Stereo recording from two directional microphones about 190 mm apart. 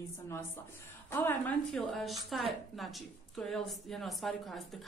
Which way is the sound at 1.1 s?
15° left (ahead or behind).